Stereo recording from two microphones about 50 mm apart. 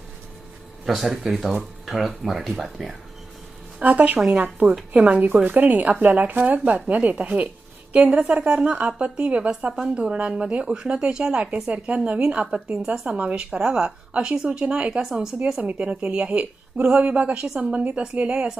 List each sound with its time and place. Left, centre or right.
0.9 s speech: centre
3.8 s speech: right
12.9 s speech: right; by 15.3 s centre
15.6 s speech: right
16.9 s speech: right